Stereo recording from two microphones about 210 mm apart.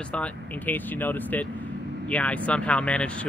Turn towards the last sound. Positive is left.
turn(degrees=5)  # may be behind; listen again after turning